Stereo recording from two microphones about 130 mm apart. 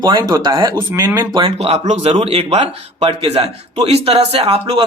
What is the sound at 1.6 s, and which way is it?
Speech, 50° right (ahead or behind).